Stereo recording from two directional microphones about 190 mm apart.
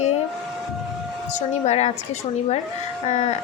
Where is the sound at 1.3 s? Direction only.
35° left (ahead or behind).